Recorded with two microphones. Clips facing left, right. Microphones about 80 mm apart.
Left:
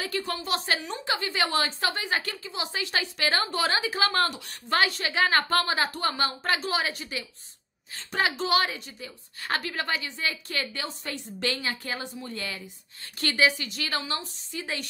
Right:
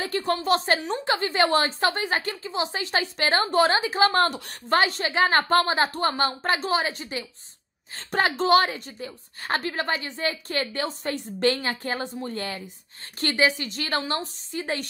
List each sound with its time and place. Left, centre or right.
0.0 s a woman's voice: right
7.9 s a woman's voice: right